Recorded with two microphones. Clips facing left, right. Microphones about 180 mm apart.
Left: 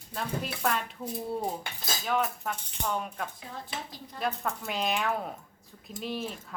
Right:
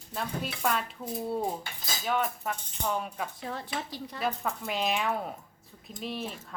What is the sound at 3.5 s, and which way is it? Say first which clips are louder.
Speech: right 4 dB; 70° right (ahead or behind).